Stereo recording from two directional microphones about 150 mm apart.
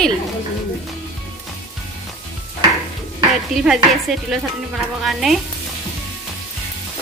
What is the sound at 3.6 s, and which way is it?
Speech, 5° right (ahead or behind).